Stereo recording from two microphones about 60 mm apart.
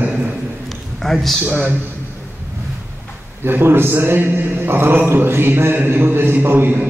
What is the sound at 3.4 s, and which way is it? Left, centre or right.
A man's voice, right.